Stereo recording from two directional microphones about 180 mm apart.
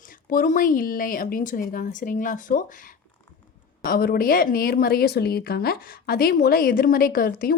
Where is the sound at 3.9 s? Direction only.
55° left (ahead or behind).